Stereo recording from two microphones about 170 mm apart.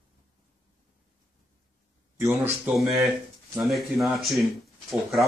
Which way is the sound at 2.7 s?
Centre (ahead or behind).